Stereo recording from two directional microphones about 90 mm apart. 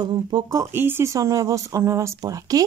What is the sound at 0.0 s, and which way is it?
Speech, 55° right (ahead or behind).